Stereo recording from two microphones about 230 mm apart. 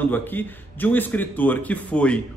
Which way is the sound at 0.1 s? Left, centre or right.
Centre.